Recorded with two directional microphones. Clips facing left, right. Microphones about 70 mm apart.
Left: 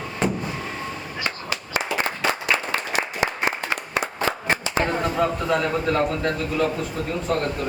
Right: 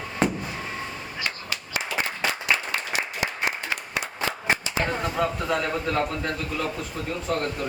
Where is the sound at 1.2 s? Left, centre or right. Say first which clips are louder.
Left 5 dB; left.